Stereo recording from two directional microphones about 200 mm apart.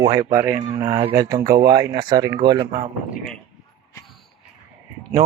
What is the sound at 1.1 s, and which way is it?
Speech, 15° right (ahead or behind).